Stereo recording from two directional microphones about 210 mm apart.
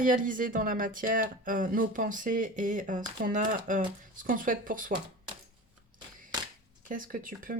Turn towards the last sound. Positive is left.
turn(degrees=-40)  # may be behind; listen again after turning